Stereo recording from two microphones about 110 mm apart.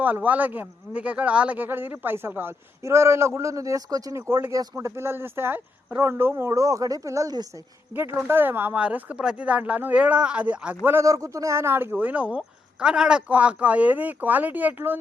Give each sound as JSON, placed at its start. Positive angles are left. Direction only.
{"t": 0.0, "sound": "speech", "side_deg": -15}
{"t": 7.9, "sound": "speech", "side_deg": -20}
{"t": 10.8, "sound": "speech", "side_deg": -25}